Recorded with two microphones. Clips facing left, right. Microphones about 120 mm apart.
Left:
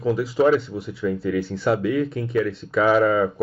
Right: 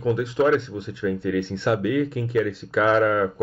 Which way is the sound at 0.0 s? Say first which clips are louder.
Left 2 dB; 5° left (ahead or behind).